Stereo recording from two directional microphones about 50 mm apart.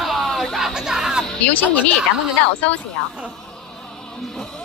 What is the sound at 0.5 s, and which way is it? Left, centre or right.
Music, centre.